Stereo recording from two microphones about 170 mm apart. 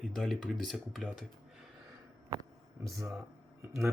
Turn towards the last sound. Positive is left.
turn(degrees=-15)  # may be behind; listen again after turning